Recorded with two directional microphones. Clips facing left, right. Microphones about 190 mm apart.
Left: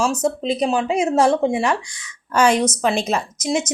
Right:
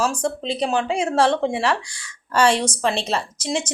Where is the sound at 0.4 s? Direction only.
40° left (ahead or behind).